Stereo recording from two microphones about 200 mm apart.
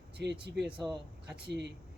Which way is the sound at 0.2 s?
55° right (ahead or behind).